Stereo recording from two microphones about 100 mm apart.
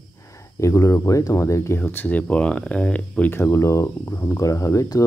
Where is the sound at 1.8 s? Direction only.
20° left (ahead or behind).